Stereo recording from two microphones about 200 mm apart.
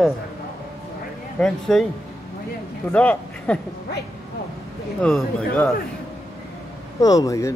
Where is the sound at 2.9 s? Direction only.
5° left (ahead or behind).